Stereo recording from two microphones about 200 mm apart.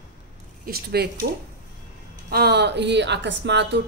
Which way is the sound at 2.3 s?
55° right (ahead or behind).